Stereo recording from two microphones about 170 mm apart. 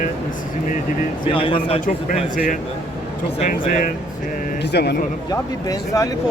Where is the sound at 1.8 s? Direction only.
50° left (ahead or behind).